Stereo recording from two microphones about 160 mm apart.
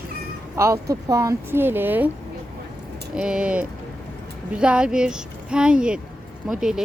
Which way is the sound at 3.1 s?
5° right (ahead or behind).